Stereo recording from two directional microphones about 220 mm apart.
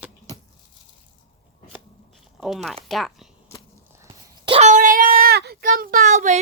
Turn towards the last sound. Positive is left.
turn(degrees=-35)  # may be behind; listen again after turning